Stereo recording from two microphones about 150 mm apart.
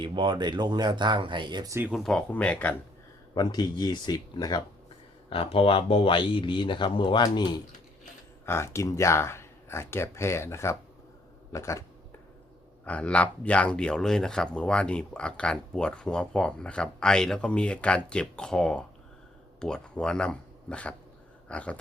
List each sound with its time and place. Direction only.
0.0 s speech: 30° right (ahead or behind)
1.9 s speech: 5° left (ahead or behind)
3.3 s speech: 30° left (ahead or behind)
5.3 s speech: 35° left (ahead or behind)
8.4 s speech: 15° left (ahead or behind)
12.8 s speech: 10° left (ahead or behind)